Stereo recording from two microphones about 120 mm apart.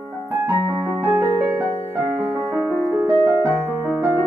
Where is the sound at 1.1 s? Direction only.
20° right (ahead or behind).